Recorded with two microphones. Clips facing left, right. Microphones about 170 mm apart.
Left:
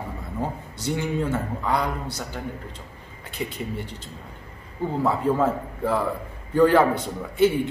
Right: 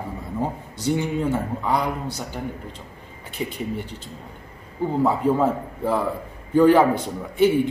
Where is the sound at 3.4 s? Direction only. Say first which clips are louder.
Right 2 dB; 20° right (ahead or behind).